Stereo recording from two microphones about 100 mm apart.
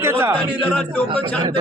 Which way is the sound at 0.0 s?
25° right (ahead or behind).